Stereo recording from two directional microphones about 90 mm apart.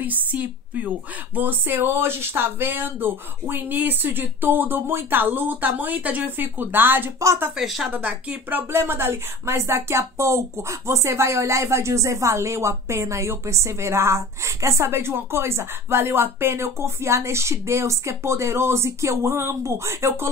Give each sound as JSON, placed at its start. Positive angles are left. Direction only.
{"t": 0.0, "sound": "a woman's voice", "side_deg": -20}
{"t": 7.5, "sound": "speech", "side_deg": -5}
{"t": 7.9, "sound": "a woman's voice", "side_deg": -15}